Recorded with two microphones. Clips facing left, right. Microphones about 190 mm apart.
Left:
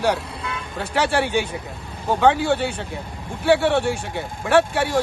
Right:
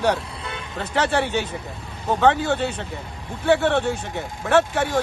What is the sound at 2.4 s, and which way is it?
Speech, 10° left (ahead or behind).